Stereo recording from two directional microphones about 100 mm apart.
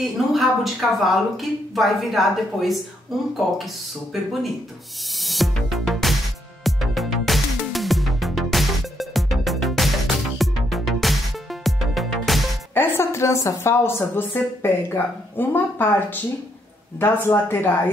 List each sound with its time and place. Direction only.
0.0 s speech: centre (ahead or behind)
4.1 s speech: centre (ahead or behind)
5.2 s music: centre (ahead or behind)
12.7 s a woman's voice: 20° left (ahead or behind)
17.0 s a woman's voice: 20° left (ahead or behind)